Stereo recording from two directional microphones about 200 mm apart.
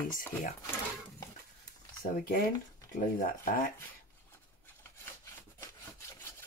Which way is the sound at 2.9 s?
45° left (ahead or behind).